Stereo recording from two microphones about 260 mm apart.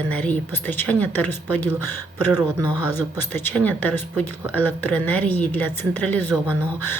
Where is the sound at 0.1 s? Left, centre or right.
Centre.